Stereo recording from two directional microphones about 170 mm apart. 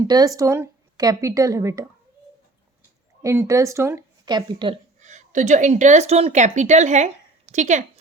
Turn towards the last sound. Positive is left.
turn(degrees=-45)  # may be behind; listen again after turning